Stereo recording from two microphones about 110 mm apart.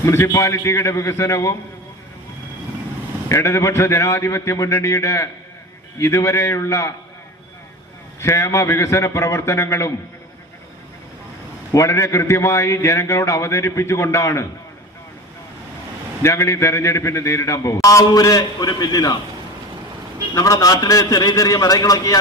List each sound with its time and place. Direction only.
0.0 s a man's voice: 25° left (ahead or behind)
3.2 s a man's voice: 25° left (ahead or behind)
8.2 s a man's voice: 25° left (ahead or behind)
11.7 s a man's voice: 25° left (ahead or behind)
16.2 s a man's voice: 25° left (ahead or behind)
20.3 s a man's voice: 30° left (ahead or behind)